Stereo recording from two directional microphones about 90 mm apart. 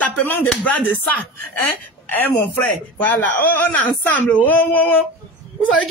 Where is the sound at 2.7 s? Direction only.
20° left (ahead or behind).